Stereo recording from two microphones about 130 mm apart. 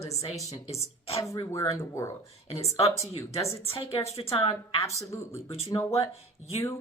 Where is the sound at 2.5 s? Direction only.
55° left (ahead or behind).